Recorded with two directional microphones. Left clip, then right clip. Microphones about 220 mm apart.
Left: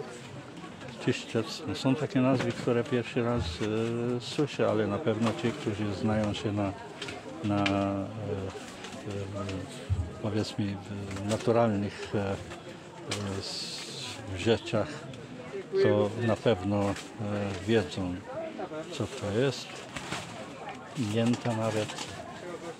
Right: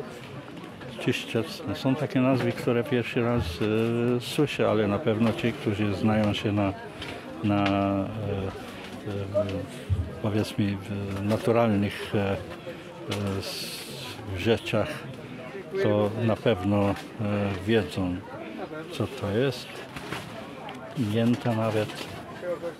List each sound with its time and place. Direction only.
1.0 s speech: 10° right (ahead or behind)
10.2 s speech: 10° right (ahead or behind)
13.4 s speech: 15° right (ahead or behind)
21.1 s speech: 10° right (ahead or behind)